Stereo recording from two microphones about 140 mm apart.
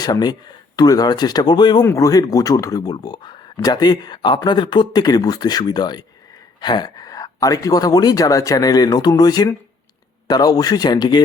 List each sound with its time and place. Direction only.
0.0 s speech: 30° left (ahead or behind)
1.8 s speech: 20° left (ahead or behind)